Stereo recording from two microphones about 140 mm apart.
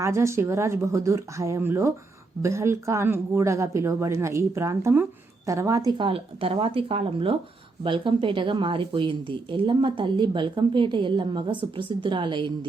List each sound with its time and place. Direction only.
0.0 s speech: 20° right (ahead or behind)